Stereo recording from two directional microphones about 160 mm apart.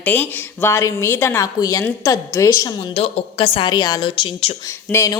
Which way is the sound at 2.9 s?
40° left (ahead or behind).